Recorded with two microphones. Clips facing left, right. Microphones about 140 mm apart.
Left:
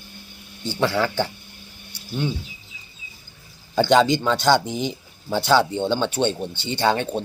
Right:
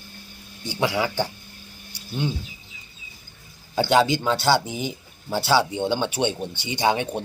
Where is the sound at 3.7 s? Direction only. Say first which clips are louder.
Left 3 dB; 5° right (ahead or behind).